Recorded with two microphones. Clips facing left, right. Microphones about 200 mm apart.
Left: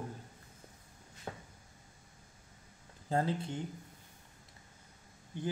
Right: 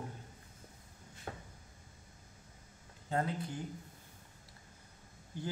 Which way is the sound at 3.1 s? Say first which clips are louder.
Left 3 dB; 25° left (ahead or behind).